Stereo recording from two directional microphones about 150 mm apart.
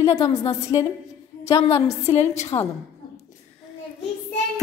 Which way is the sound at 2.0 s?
50° left (ahead or behind).